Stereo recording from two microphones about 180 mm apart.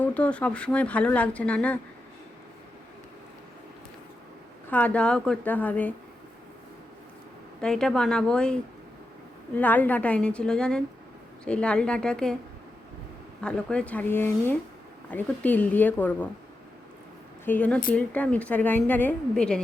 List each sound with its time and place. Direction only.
0.0 s speech: 5° left (ahead or behind)
4.7 s speech: 10° left (ahead or behind)
7.6 s a woman's voice: 5° left (ahead or behind)
9.6 s a woman's voice: 10° left (ahead or behind)
13.4 s speech: 5° left (ahead or behind)
17.4 s speech: 10° left (ahead or behind)